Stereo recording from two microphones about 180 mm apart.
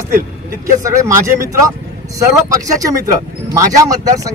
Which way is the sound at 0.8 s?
15° right (ahead or behind).